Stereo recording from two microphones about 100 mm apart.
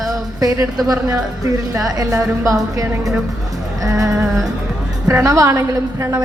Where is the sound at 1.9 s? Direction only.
35° right (ahead or behind).